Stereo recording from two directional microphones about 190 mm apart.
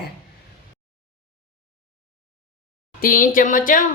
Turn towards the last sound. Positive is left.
turn(degrees=45)  # may be behind; listen again after turning